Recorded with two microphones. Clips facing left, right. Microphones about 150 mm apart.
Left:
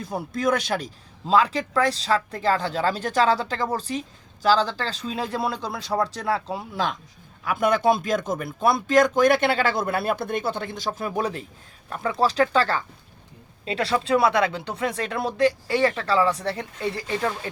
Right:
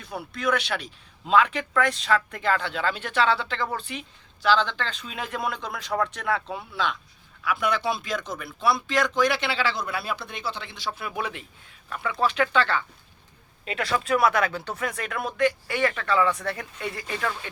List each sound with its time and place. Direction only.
0.0 s speech: 40° left (ahead or behind)
7.4 s speech: 45° left (ahead or behind); by 17.5 s 30° left (ahead or behind)